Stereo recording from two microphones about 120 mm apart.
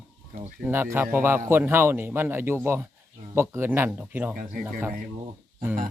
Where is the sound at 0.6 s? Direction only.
15° right (ahead or behind).